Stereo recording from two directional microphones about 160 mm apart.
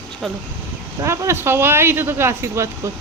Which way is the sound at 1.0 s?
15° right (ahead or behind).